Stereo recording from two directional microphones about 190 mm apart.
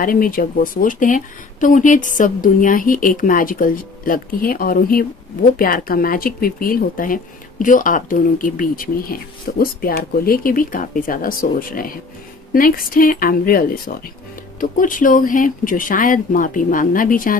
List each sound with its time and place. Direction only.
0.0 s speech: 50° left (ahead or behind)